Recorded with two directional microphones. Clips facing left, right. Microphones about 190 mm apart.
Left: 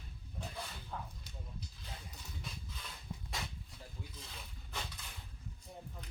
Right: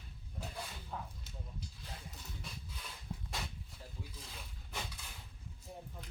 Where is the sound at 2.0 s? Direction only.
Centre (ahead or behind).